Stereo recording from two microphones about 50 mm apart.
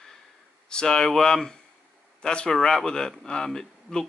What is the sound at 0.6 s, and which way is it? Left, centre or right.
Speech, centre.